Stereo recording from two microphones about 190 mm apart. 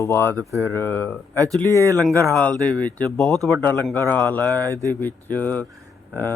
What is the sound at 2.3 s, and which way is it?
Speech, 5° left (ahead or behind).